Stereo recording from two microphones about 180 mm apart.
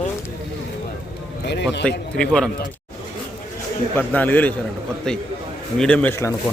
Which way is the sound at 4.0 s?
10° left (ahead or behind).